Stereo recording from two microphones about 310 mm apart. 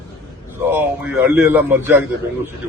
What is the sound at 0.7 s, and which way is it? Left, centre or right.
A man's voice, centre.